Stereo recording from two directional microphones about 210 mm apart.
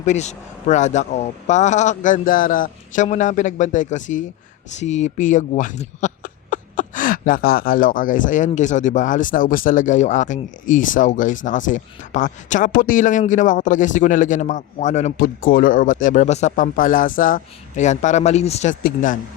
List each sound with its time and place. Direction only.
0.0 s speech: 35° left (ahead or behind)